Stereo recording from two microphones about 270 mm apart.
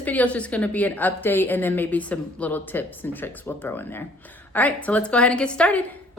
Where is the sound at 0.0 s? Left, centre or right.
Centre.